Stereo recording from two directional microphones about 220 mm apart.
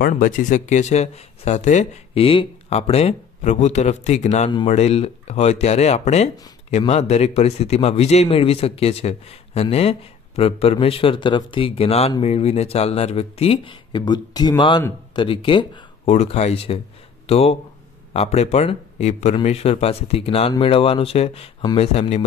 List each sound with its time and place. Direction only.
0.0 s a man's voice: 35° left (ahead or behind)